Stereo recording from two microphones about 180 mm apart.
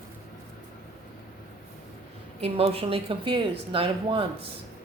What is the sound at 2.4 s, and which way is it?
Speech, 30° right (ahead or behind).